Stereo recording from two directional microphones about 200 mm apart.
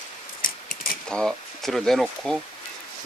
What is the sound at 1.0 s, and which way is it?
Speech, 5° left (ahead or behind).